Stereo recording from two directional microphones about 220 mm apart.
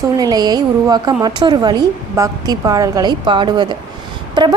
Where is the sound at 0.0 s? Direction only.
15° right (ahead or behind).